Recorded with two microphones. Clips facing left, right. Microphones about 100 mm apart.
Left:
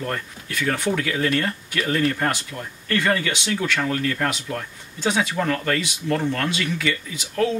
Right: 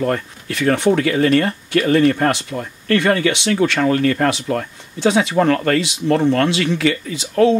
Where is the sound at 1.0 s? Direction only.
55° right (ahead or behind).